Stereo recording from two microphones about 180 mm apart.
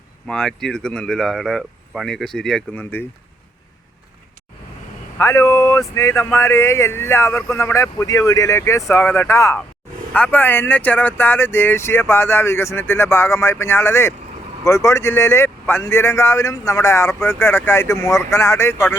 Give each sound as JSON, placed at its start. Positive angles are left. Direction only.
{"t": 0.3, "sound": "speech", "side_deg": 5}
{"t": 5.1, "sound": "speech", "side_deg": 15}